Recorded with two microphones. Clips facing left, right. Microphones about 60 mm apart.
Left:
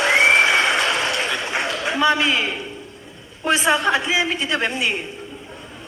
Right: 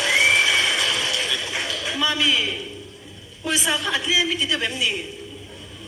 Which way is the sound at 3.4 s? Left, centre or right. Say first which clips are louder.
Left 6 dB; left.